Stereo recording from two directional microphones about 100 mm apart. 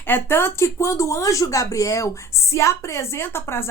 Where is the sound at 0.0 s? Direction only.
25° left (ahead or behind).